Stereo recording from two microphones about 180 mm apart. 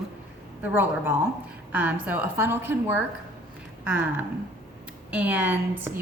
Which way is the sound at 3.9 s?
10° right (ahead or behind).